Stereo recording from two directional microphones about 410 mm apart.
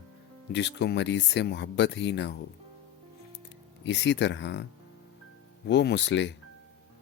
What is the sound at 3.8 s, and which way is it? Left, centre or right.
Speech, left.